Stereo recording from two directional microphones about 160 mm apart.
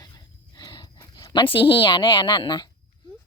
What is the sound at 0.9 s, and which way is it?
A child's voice, 25° left (ahead or behind).